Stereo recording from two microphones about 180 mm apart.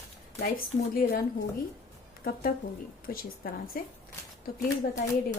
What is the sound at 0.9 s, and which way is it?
A woman's voice, 60° left (ahead or behind).